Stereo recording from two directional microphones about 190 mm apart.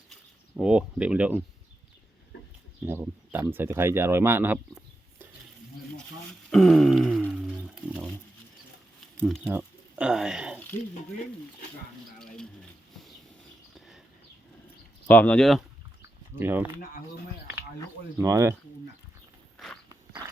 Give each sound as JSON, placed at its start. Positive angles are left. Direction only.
{"t": 0.5, "sound": "speech", "side_deg": -5}
{"t": 2.8, "sound": "speech", "side_deg": -10}
{"t": 6.5, "sound": "a sound", "side_deg": 0}
{"t": 9.1, "sound": "speech", "side_deg": 0}
{"t": 13.7, "sound": "a sound", "side_deg": 0}
{"t": 15.0, "sound": "speech", "side_deg": 10}
{"t": 16.3, "sound": "speech", "side_deg": -10}
{"t": 18.2, "sound": "speech", "side_deg": -15}
{"t": 19.5, "sound": "walk", "side_deg": 0}